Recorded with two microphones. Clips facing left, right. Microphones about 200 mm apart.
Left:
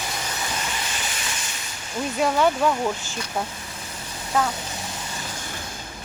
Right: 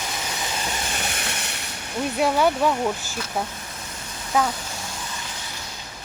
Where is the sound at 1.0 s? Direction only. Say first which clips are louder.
Right 2 dB; 60° right (ahead or behind).